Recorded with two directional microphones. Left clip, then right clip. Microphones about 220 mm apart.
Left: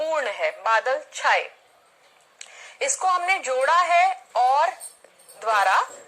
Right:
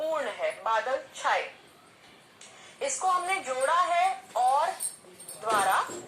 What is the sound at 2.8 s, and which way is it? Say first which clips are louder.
Speech: left 5 dB; 35° left (ahead or behind).